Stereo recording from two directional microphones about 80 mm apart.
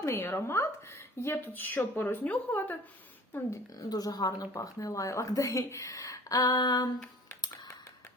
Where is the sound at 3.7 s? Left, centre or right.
Left.